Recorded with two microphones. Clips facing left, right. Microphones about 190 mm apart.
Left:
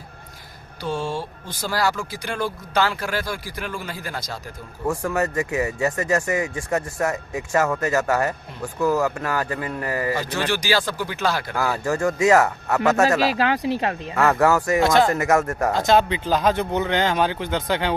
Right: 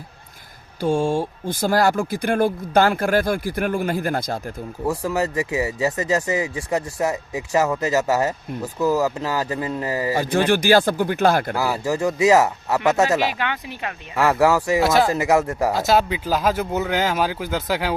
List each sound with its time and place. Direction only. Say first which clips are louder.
0.8 s speech: right 7 dB; 50° right (ahead or behind)
4.9 s speech: even; 15° right (ahead or behind)
8.8 s speech: right 1 dB; 5° right (ahead or behind)
9.1 s speech: right 1 dB; 20° right (ahead or behind)
10.2 s speech: right 6 dB; 50° right (ahead or behind)
11.5 s speech: right 1 dB; 10° right (ahead or behind)
13.3 s speech: left 7 dB; 35° left (ahead or behind)
14.2 s speech: right 1 dB; centre (ahead or behind)
15.1 s speech: right 1 dB; 15° right (ahead or behind)